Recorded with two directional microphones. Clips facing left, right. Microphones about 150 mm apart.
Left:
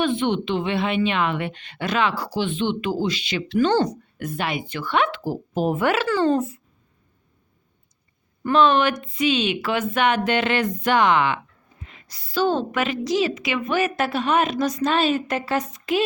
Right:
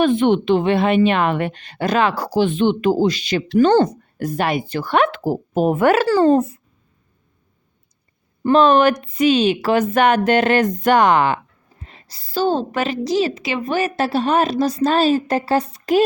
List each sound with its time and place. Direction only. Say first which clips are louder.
0.0 s a woman's voice: right 6 dB; 45° right (ahead or behind)
4.2 s a woman's voice: right 7 dB; 40° right (ahead or behind)
8.4 s a woman's voice: right 5 dB; 40° right (ahead or behind)